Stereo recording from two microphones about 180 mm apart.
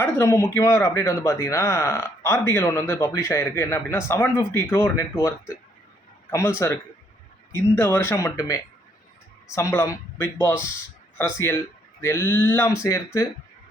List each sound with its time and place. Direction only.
0.0 s speech: 15° left (ahead or behind)
7.8 s speech: 15° left (ahead or behind)